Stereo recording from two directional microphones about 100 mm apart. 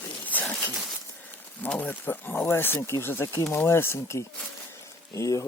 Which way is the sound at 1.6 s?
15° left (ahead or behind).